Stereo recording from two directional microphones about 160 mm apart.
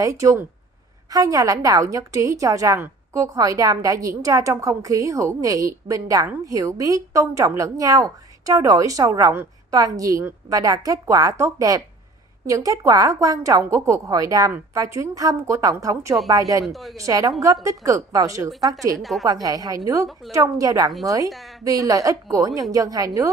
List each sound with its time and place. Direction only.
0.0 s a woman's voice: 20° right (ahead or behind)
16.6 s a woman's voice: centre (ahead or behind)
17.0 s a woman's voice: 20° right (ahead or behind)
18.9 s a woman's voice: centre (ahead or behind)
19.2 s a woman's voice: 20° right (ahead or behind)